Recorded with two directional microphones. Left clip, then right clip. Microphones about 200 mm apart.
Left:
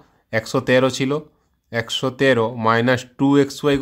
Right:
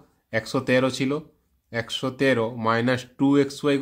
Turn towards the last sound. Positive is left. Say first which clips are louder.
# left 4 dB
turn(degrees=25)  # may be behind; listen again after turning